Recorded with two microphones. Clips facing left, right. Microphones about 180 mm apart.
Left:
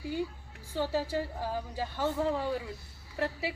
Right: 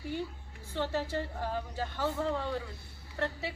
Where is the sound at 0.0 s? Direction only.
10° left (ahead or behind).